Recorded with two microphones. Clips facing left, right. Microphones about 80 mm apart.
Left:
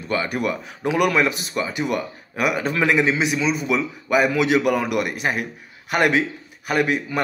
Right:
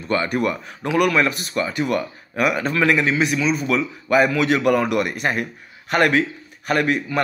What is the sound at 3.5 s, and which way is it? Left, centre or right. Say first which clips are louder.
A man's voice: right 1 dB; centre.